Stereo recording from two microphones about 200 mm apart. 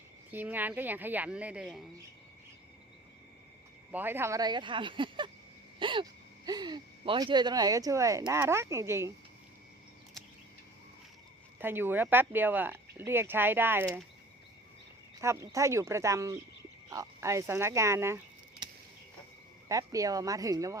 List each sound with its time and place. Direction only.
0.3 s speech: 10° right (ahead or behind)
3.9 s speech: 10° right (ahead or behind)
5.8 s a sound: 25° right (ahead or behind)
8.3 s speech: 15° right (ahead or behind)
11.6 s speech: 10° right (ahead or behind)
15.2 s speech: 15° right (ahead or behind)
19.6 s speech: 15° right (ahead or behind)